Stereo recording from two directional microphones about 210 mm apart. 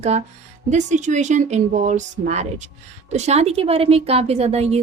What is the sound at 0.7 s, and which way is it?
A woman's voice, 35° right (ahead or behind).